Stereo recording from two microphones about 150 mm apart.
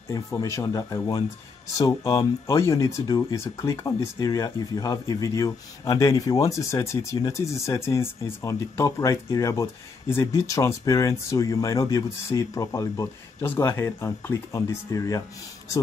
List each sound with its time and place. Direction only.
0.1 s speech: 20° left (ahead or behind)